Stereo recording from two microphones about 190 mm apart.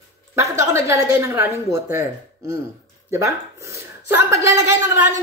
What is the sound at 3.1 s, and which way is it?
A woman's voice, 15° right (ahead or behind).